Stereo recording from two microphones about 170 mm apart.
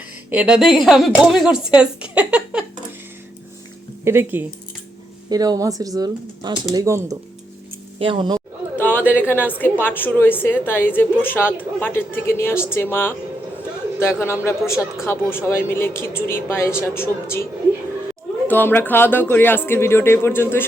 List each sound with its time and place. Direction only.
0.3 s a woman's voice: 5° right (ahead or behind)
4.0 s speech: 15° right (ahead or behind)
7.9 s speech: 30° right (ahead or behind)
8.8 s a woman's voice: 10° left (ahead or behind)
18.4 s a woman's voice: 10° left (ahead or behind)